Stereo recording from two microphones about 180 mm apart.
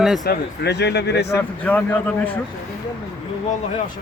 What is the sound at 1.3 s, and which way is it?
Speech, 10° left (ahead or behind).